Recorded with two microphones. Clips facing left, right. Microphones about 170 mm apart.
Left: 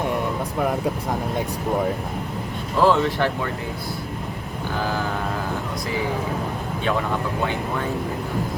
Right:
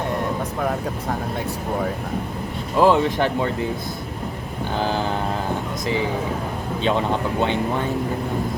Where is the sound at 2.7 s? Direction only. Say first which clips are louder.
Right 2 dB; 15° right (ahead or behind).